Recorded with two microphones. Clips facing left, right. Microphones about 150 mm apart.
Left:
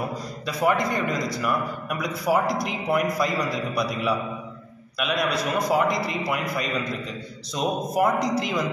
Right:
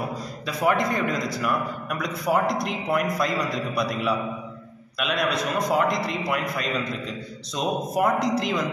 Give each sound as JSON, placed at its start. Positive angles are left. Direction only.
{"t": 0.5, "sound": "a man's voice", "side_deg": 0}